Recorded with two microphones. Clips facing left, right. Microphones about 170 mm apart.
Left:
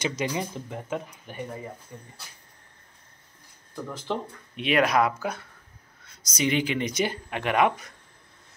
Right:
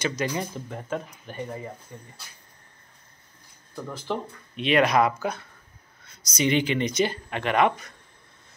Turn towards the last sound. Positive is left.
turn(degrees=10)  # may be behind; listen again after turning